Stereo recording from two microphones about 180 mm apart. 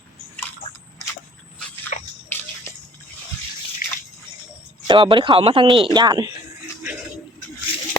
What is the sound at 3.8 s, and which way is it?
Drip, 50° left (ahead or behind).